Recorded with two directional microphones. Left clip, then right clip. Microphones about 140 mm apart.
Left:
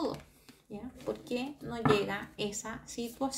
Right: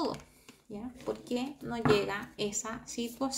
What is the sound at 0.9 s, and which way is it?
A woman's voice, 25° right (ahead or behind).